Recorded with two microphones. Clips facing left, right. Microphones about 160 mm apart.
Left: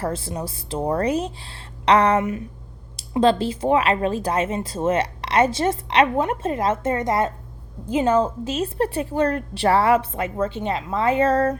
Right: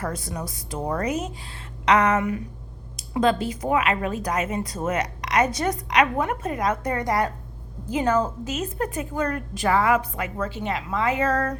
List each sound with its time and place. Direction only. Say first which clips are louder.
0.0 s speech: left 4 dB; 30° left (ahead or behind)
1.8 s a sound: left 3 dB; 30° left (ahead or behind)
3.2 s speech: left 4 dB; 30° left (ahead or behind)